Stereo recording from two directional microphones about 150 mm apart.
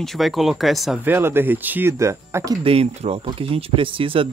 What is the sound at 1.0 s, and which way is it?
Speech, 15° right (ahead or behind).